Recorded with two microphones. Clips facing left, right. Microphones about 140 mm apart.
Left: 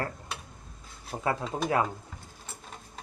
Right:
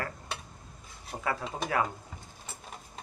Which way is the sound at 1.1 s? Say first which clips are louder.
Left 3 dB; 15° left (ahead or behind).